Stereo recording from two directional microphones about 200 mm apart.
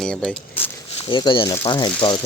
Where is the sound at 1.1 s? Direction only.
20° left (ahead or behind).